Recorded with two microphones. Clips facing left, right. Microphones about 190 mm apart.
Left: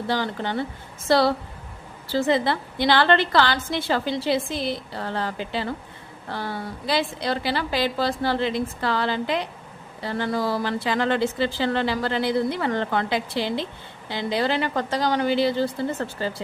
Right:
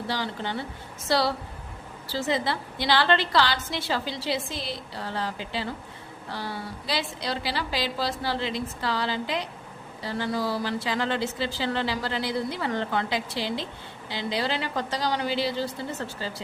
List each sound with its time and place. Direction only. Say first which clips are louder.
0.1 s a woman's voice: left 6 dB; 50° left (ahead or behind)